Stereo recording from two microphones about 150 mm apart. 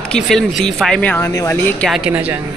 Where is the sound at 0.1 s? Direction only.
5° left (ahead or behind).